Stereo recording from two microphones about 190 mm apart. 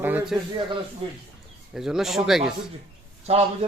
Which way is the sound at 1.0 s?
30° right (ahead or behind).